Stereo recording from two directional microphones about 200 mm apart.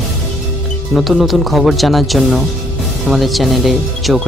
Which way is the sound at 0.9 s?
Centre (ahead or behind).